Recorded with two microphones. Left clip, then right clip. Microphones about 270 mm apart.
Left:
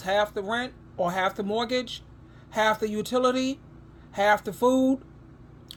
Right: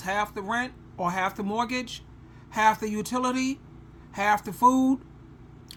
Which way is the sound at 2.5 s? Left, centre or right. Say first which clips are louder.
Right 1 dB; centre.